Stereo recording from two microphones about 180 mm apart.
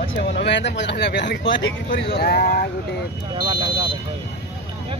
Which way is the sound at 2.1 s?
60° left (ahead or behind).